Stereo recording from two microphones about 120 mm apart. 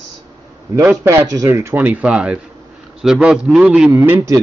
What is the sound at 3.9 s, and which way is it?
Mantra, 20° right (ahead or behind).